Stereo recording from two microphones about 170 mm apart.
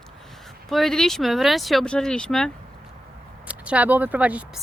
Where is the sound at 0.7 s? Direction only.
Centre (ahead or behind).